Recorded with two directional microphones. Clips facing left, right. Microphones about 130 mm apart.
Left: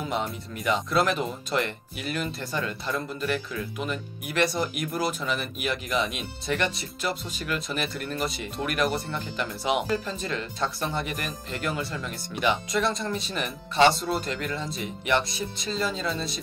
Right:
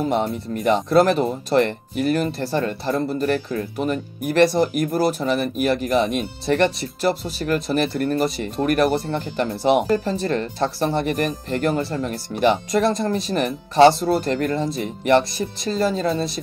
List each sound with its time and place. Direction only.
0.0 s speech: 40° right (ahead or behind)
8.9 s speech: 30° right (ahead or behind)
9.7 s speech: 45° right (ahead or behind)